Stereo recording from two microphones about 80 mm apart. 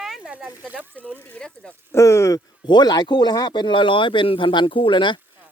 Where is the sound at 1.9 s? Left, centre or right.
Left.